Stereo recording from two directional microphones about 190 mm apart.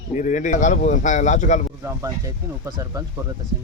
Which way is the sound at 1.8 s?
15° right (ahead or behind).